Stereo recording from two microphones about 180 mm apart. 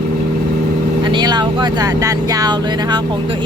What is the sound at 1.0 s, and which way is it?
Speech, 25° right (ahead or behind).